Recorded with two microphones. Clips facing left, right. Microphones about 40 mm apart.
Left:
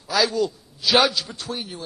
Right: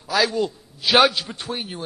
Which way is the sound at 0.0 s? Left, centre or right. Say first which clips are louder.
Even; right.